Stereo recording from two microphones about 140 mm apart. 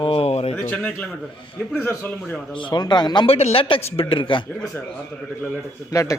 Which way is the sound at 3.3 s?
45° left (ahead or behind).